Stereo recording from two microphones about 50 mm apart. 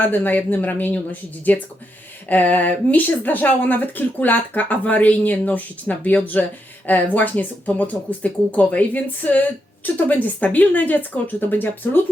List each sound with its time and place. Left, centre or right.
0.0 s speech: left